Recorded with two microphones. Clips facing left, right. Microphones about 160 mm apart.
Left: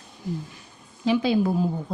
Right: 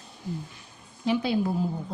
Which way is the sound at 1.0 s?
90° left.